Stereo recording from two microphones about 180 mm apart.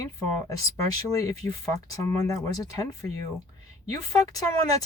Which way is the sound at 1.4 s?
15° left (ahead or behind).